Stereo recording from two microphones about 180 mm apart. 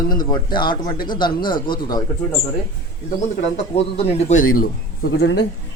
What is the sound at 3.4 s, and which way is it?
Speech, 40° left (ahead or behind).